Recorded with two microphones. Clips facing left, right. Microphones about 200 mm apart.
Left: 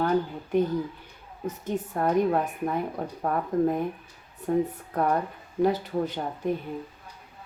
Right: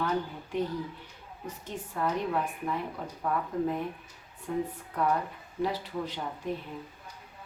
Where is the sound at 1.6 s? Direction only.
50° left (ahead or behind).